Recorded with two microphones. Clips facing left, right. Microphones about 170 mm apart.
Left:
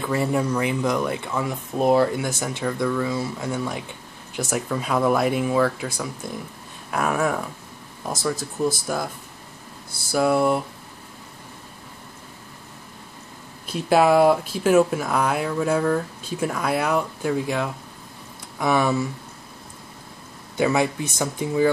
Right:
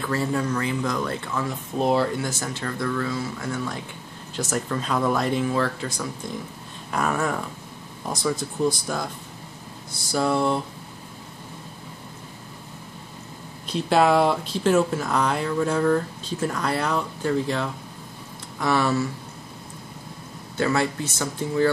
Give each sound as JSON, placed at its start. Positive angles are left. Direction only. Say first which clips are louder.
{"t": 0.0, "sound": "speech", "louder": "left 2 dB", "side_deg": 15}
{"t": 10.1, "sound": "speech", "louder": "left 3 dB", "side_deg": 10}
{"t": 13.7, "sound": "speech", "louder": "left 2 dB", "side_deg": 5}
{"t": 20.5, "sound": "speech", "louder": "left 2 dB", "side_deg": 15}